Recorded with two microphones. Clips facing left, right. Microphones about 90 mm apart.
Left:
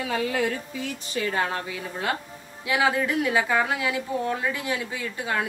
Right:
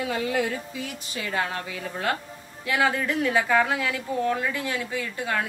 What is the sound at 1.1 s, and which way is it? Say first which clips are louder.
A woman's voice: left 2 dB; 35° left (ahead or behind).